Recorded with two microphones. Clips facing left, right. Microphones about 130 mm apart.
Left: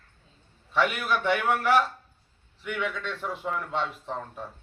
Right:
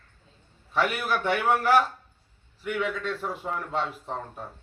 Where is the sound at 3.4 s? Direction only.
35° right (ahead or behind).